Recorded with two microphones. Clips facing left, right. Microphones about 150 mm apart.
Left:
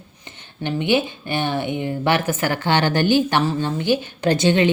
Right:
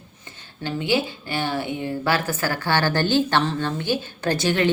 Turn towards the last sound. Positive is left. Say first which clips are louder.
# left 4 dB
turn(degrees=20)  # may be behind; listen again after turning